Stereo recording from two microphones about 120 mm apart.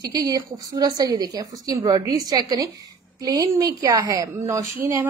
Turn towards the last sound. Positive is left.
turn(degrees=-25)  # may be behind; listen again after turning